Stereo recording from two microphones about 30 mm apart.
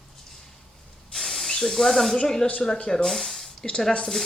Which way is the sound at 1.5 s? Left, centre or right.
Centre.